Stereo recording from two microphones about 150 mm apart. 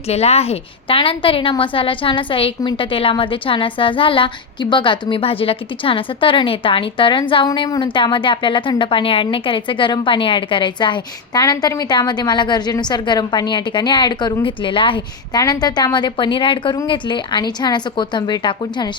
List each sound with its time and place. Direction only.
0.1 s a woman's voice: 45° left (ahead or behind)